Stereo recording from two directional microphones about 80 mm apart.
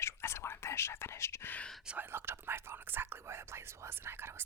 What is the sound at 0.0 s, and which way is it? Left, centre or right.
Whispering, left.